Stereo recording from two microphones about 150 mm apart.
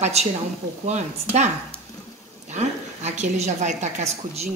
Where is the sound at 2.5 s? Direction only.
50° right (ahead or behind).